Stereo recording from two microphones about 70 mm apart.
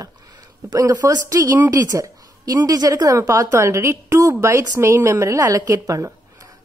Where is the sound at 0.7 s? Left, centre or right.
Right.